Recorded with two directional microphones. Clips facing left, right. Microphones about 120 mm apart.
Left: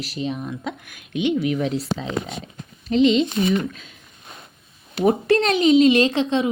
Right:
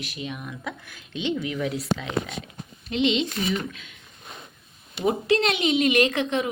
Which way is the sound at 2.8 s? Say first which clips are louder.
Left 7 dB; 40° left (ahead or behind).